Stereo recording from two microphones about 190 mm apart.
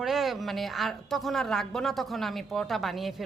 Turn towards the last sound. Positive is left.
turn(degrees=0)  # may be behind; listen again after turning